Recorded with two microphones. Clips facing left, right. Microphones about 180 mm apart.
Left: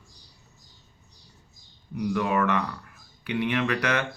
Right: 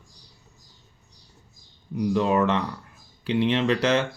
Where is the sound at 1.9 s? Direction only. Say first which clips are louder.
Right 4 dB; 25° right (ahead or behind).